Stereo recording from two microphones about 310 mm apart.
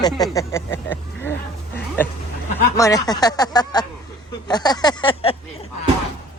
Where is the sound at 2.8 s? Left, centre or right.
Centre.